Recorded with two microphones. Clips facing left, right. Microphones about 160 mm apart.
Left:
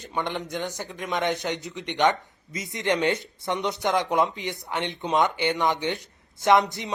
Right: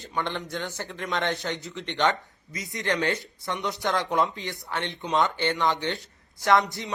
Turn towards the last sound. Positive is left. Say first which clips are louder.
# left 2 dB
turn(degrees=20)  # may be behind; listen again after turning